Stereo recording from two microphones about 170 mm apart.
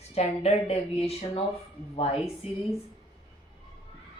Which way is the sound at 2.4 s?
35° left (ahead or behind).